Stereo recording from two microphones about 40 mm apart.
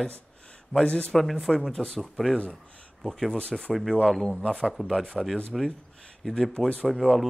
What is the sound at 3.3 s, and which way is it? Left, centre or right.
Speech, left.